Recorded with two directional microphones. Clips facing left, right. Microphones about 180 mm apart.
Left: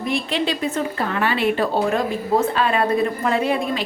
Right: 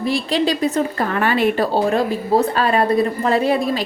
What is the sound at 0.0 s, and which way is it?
A woman's voice, 35° right (ahead or behind).